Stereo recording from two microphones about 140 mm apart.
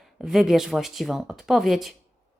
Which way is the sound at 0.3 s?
Centre (ahead or behind).